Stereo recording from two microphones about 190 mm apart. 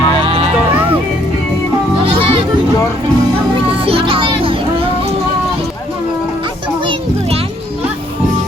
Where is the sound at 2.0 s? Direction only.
25° right (ahead or behind).